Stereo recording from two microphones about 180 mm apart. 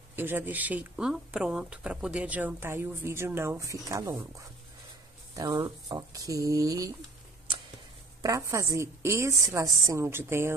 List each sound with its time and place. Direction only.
0.1 s speech: 10° right (ahead or behind)
5.3 s speech: 20° right (ahead or behind)
8.2 s speech: 15° right (ahead or behind)